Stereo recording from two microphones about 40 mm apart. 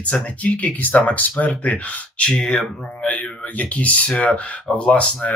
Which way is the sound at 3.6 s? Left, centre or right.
Left.